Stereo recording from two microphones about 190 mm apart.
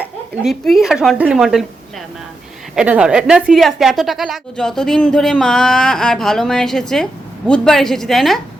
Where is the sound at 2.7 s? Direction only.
5° right (ahead or behind).